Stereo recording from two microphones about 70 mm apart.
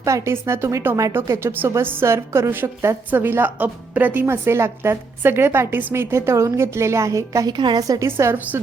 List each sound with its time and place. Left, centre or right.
0.0 s a woman's voice: right
7.5 s a woman's voice: right
8.0 s a woman's voice: right